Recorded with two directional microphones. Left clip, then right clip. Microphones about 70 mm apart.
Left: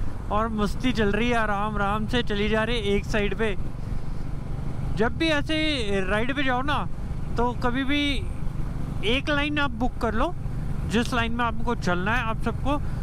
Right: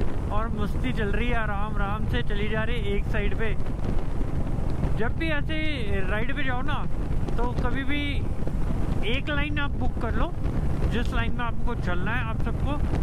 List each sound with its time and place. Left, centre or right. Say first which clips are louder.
0.3 s speech: left 8 dB; left
4.9 s speech: left 6 dB; left